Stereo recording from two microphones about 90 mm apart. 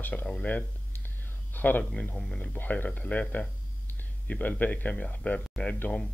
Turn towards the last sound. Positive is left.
turn(degrees=15)  # may be behind; listen again after turning